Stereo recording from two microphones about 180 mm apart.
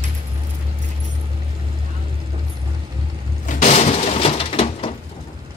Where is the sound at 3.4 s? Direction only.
40° left (ahead or behind).